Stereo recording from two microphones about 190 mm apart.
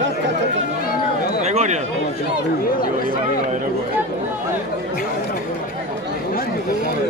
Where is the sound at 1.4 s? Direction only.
35° right (ahead or behind).